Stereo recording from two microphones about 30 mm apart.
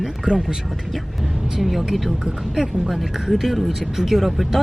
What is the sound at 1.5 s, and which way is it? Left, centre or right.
Speech, centre.